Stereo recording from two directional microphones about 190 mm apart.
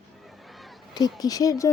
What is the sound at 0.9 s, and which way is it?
Speech, 20° left (ahead or behind).